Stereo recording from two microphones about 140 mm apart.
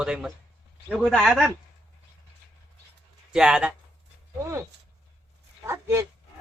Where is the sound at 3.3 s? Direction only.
5° right (ahead or behind).